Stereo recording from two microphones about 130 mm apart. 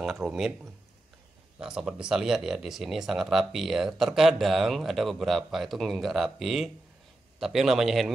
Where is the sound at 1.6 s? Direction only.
5° right (ahead or behind).